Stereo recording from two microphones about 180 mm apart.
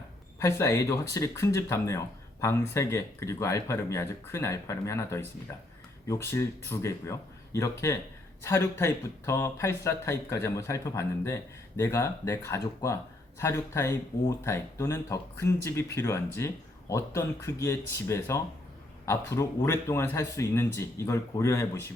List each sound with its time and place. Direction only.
0.3 s speech: 15° left (ahead or behind)